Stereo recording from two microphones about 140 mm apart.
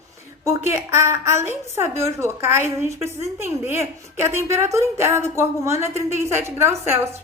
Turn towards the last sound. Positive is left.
turn(degrees=-20)  # may be behind; listen again after turning